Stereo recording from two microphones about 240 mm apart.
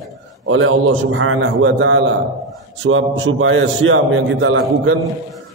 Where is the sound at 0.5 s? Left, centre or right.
Right.